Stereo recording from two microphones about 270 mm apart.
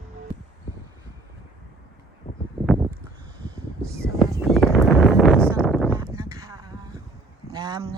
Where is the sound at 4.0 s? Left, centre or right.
Centre.